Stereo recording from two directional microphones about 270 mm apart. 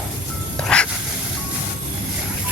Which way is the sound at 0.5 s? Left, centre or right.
Centre.